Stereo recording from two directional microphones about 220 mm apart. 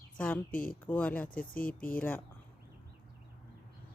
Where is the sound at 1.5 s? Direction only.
40° left (ahead or behind).